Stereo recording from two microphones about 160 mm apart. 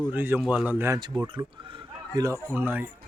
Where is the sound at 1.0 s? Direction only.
25° right (ahead or behind); by 2.9 s 10° right (ahead or behind).